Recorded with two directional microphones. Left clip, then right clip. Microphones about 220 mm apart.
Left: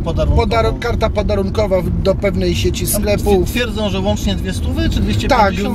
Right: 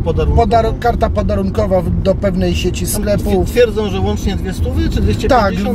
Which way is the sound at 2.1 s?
20° right (ahead or behind).